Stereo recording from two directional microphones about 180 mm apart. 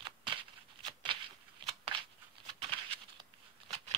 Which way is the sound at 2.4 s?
30° right (ahead or behind).